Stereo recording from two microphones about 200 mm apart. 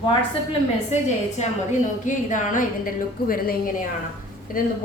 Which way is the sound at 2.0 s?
40° left (ahead or behind).